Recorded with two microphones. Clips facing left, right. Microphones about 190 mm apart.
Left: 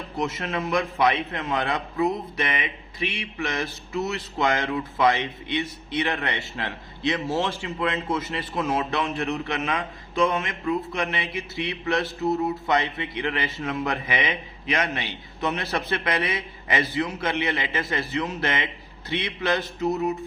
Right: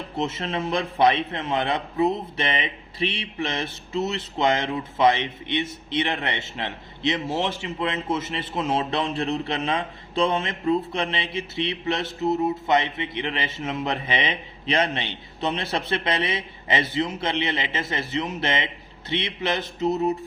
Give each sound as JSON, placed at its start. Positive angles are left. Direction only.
{"t": 0.2, "sound": "a man's voice", "side_deg": -25}